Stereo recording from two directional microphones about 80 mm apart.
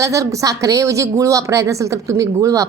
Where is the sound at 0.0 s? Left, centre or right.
Right.